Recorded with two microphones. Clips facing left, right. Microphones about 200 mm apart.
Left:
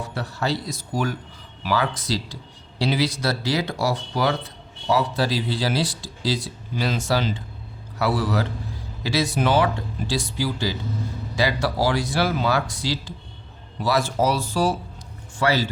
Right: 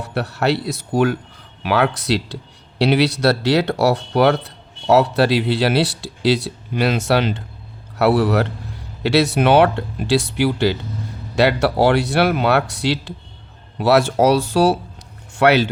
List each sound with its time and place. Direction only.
0.0 s speech: 70° right (ahead or behind)